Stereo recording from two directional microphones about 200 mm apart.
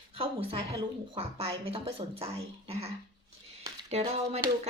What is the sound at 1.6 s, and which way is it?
Speech, 30° right (ahead or behind).